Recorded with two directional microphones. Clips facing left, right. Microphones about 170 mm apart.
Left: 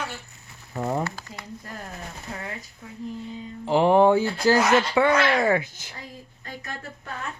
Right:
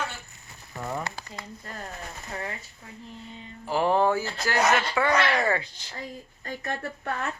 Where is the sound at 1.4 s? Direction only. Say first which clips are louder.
Left 1 dB; 5° left (ahead or behind).